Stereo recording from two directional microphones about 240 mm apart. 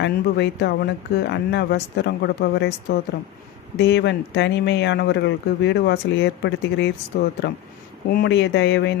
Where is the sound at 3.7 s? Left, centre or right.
Left.